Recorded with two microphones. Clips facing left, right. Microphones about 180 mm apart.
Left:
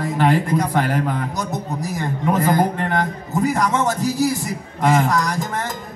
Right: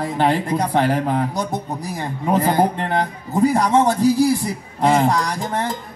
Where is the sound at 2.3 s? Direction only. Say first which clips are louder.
Right 1 dB; 30° right (ahead or behind).